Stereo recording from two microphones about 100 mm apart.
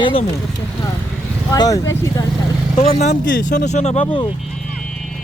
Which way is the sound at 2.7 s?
80° left.